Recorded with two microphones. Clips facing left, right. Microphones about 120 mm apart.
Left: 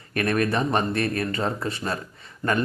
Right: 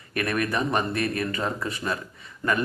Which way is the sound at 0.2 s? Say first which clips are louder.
Left 3 dB; 35° left (ahead or behind).